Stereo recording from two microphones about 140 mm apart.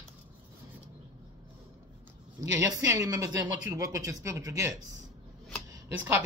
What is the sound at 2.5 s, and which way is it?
Speech, 25° right (ahead or behind).